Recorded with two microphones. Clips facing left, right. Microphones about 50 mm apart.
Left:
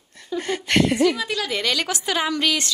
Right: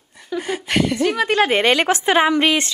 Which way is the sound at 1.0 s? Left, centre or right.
Right.